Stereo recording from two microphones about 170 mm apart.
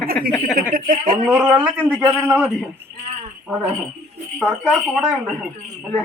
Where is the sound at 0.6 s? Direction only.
55° right (ahead or behind).